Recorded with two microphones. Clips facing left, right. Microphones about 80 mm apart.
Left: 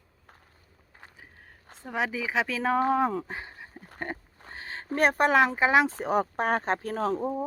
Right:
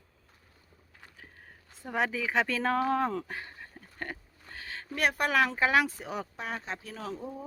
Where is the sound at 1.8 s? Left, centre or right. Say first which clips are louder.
Even; centre.